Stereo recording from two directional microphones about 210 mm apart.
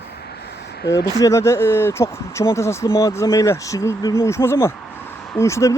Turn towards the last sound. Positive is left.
turn(degrees=15)  # may be behind; listen again after turning